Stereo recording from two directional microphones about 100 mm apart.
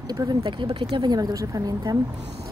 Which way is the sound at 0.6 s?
60° right (ahead or behind).